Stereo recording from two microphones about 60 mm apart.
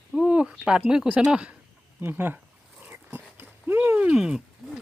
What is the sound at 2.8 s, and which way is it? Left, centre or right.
Dog, right.